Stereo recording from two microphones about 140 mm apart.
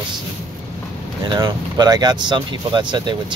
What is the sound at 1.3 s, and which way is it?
Speech, 30° right (ahead or behind).